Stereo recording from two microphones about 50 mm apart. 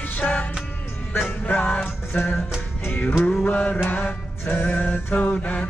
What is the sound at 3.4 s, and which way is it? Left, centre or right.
Mantra, left.